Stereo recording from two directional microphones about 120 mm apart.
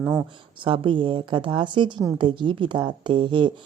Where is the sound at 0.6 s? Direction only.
45° right (ahead or behind).